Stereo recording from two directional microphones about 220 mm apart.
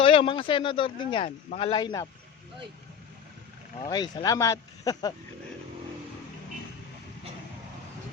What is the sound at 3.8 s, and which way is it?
Speech, 20° left (ahead or behind).